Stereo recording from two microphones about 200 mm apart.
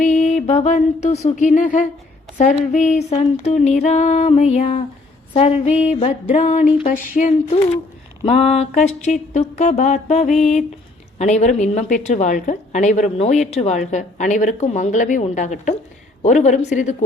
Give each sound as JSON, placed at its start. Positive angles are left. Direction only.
{"t": 0.0, "sound": "music", "side_deg": 40}
{"t": 1.2, "sound": "a woman's voice", "side_deg": 35}
{"t": 10.2, "sound": "a sound", "side_deg": 0}
{"t": 11.2, "sound": "a woman's voice", "side_deg": 35}